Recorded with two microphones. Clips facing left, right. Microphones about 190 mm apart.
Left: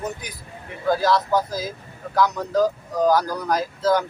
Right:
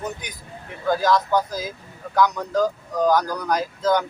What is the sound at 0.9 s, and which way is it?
Speech, 5° left (ahead or behind).